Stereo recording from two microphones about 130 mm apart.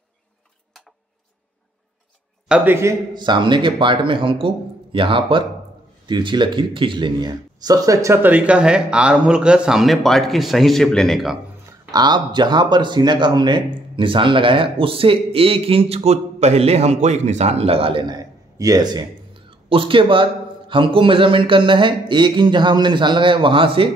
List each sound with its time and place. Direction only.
2.4 s a man's voice: 5° right (ahead or behind)
2.7 s a man's voice: 20° right (ahead or behind)
3.2 s a man's voice: 35° right (ahead or behind); by 11.3 s centre (ahead or behind)
11.9 s speech: 35° right (ahead or behind)
18.0 s a man's voice: 30° right (ahead or behind)